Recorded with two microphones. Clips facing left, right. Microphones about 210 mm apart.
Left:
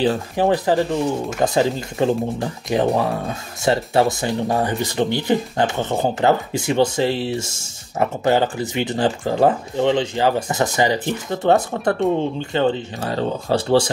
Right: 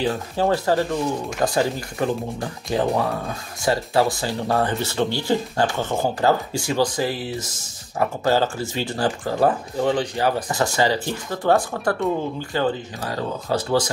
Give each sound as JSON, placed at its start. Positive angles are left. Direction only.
{"t": 0.4, "sound": "speech", "side_deg": 15}